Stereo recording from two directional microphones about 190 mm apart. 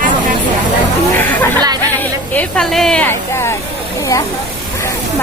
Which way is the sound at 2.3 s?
5° left (ahead or behind).